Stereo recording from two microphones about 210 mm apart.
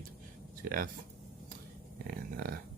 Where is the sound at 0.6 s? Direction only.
40° right (ahead or behind).